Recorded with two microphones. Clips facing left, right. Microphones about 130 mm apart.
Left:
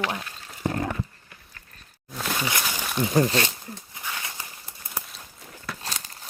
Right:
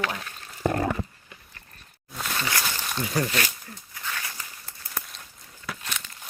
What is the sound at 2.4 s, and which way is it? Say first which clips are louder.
Speech: right 1 dB; 20° left (ahead or behind).